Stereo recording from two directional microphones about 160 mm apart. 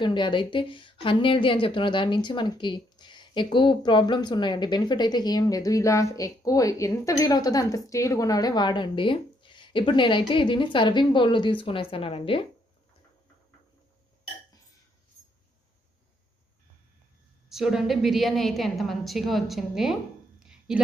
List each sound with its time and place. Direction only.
0.0 s a woman's voice: 30° left (ahead or behind)
17.5 s a woman's voice: centre (ahead or behind)